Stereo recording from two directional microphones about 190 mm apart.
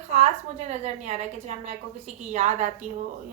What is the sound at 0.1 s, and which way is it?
A woman's voice, 35° right (ahead or behind).